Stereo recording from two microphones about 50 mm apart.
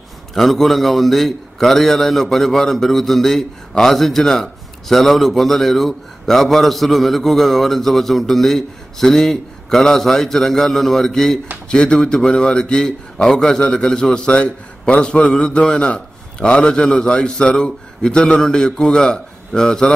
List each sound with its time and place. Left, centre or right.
0.3 s a man's voice: centre